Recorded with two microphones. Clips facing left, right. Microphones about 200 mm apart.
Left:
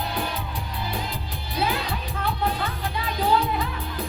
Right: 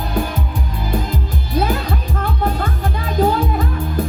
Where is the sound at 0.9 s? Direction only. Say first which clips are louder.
Right 9 dB; 45° right (ahead or behind).